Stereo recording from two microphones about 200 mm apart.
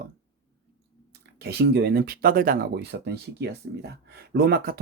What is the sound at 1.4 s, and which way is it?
Speech, 55° right (ahead or behind).